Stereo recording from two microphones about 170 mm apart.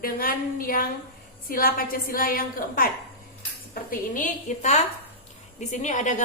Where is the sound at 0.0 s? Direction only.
60° left (ahead or behind).